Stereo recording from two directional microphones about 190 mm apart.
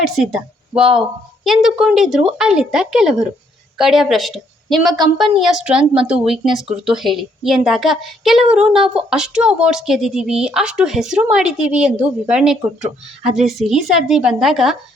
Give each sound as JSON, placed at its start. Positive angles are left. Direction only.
{"t": 0.0, "sound": "speech", "side_deg": 0}